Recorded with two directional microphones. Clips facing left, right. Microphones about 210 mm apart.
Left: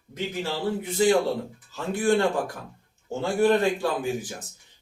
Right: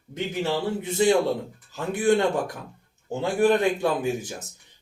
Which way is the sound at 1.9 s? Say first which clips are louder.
Right 1 dB; 20° right (ahead or behind).